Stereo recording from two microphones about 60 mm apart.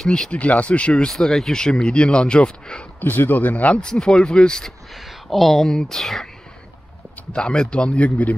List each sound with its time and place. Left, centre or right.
0.0 s speech: centre
0.3 s speech: left
1.1 s speech: centre
3.0 s speech: left
3.8 s speech: centre
4.9 s speech: centre
7.3 s speech: centre